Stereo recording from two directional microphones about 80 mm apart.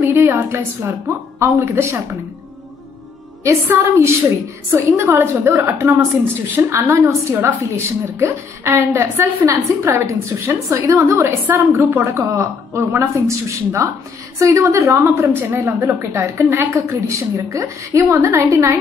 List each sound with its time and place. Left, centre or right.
0.0 s a woman's voice: right
3.7 s a woman's voice: right
15.5 s a woman's voice: right